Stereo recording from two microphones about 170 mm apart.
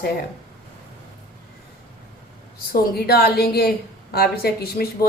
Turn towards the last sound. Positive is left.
turn(degrees=65)  # may be behind; listen again after turning